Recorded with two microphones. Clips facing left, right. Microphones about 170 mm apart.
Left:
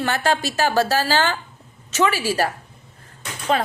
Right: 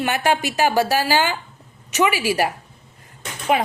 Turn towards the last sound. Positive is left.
turn(degrees=-15)  # may be behind; listen again after turning